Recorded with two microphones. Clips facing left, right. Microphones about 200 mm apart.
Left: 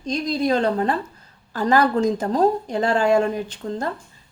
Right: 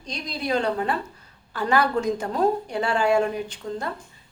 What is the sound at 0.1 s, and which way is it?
A woman's voice, 45° left (ahead or behind).